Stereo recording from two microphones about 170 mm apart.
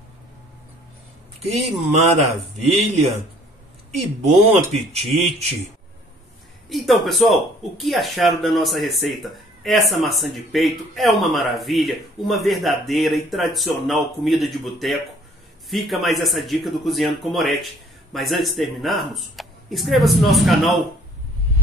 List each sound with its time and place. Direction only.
1.4 s speech: 40° right (ahead or behind)
4.2 s speech: 40° right (ahead or behind)
6.7 s speech: centre (ahead or behind)